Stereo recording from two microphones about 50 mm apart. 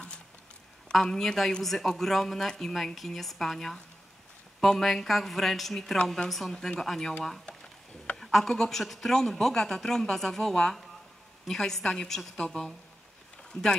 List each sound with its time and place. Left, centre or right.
0.9 s a man's voice: centre
8.2 s a man's voice: centre